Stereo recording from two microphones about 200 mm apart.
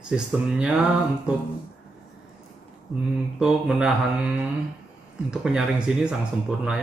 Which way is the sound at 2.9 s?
Centre (ahead or behind).